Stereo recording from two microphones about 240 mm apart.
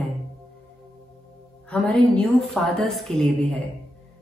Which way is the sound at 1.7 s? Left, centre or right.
Centre.